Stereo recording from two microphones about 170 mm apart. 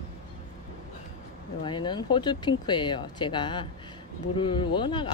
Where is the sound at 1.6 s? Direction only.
25° left (ahead or behind).